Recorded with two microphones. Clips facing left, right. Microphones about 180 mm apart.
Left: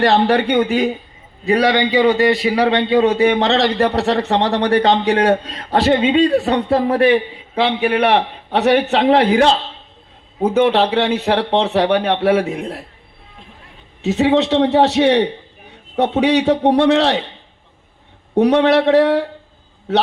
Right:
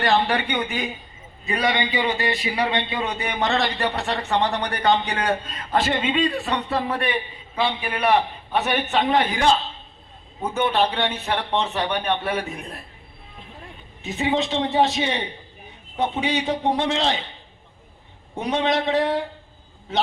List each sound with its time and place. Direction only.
0.1 s a man's voice: 65° left (ahead or behind)
5.3 s a man's voice: 35° left (ahead or behind)
6.2 s a man's voice: 65° left (ahead or behind); by 12.8 s 90° left
14.0 s a man's voice: 75° left (ahead or behind)
18.3 s a man's voice: 70° left (ahead or behind)